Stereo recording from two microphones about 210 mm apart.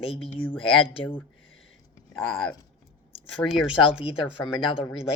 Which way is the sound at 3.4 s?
5° right (ahead or behind).